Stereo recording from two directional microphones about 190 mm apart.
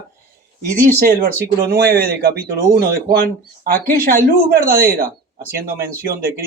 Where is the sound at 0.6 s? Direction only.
50° right (ahead or behind).